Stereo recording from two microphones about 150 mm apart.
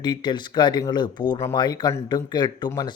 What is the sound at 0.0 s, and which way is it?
Speech, 30° left (ahead or behind).